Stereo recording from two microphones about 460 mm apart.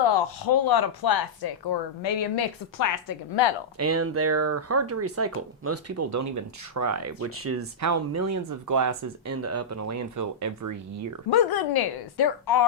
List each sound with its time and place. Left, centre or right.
0.0 s speech: left
2.7 s a woman's voice: left
3.8 s speech: right
11.3 s speech: left